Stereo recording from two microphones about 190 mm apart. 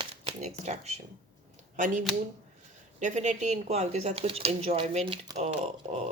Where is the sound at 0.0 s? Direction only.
30° right (ahead or behind).